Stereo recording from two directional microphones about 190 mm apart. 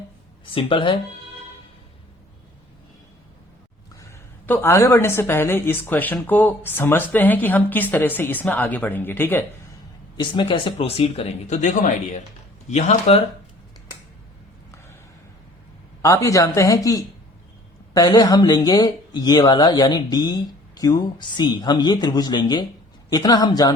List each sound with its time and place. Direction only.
0.5 s speech: 25° left (ahead or behind)
4.4 s speech: 10° left (ahead or behind)
10.2 s speech: 25° left (ahead or behind)
16.0 s speech: 15° left (ahead or behind)